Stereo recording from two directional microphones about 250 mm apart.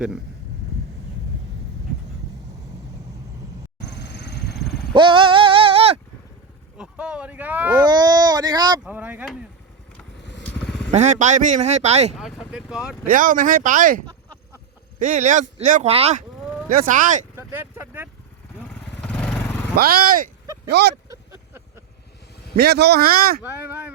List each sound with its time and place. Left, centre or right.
3.8 s a sound: left
4.9 s a sound: centre
6.7 s a sound: centre
7.8 s baby cry: centre
8.8 s speech: centre
10.4 s motorcycle: centre
10.9 s speech: right
12.1 s speech: centre
13.1 s speech: right
17.3 s vehicle: centre
19.0 s vehicle: centre
19.7 s speech: right
22.5 s speech: right